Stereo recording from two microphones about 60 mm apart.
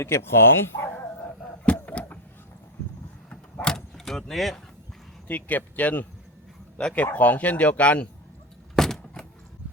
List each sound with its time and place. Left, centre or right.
0.0 s speech: left
1.6 s vehicle: left
3.6 s vehicle: centre
5.3 s speech: left
8.7 s a sound: centre